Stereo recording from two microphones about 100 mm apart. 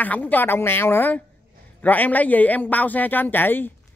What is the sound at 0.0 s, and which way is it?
A man's voice, 15° left (ahead or behind).